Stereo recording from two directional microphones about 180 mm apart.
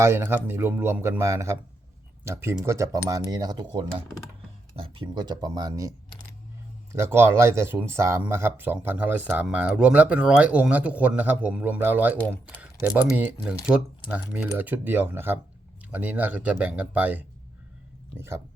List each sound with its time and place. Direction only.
0.0 s speech: 15° right (ahead or behind)
3.1 s cutlery: 20° right (ahead or behind)
6.9 s speech: 15° right (ahead or behind)